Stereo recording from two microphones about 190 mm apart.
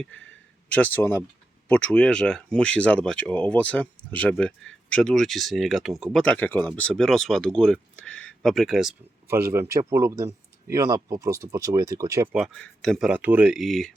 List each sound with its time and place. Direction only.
0.9 s speech: 10° left (ahead or behind)
9.2 s speech: 15° right (ahead or behind)
12.3 s speech: centre (ahead or behind)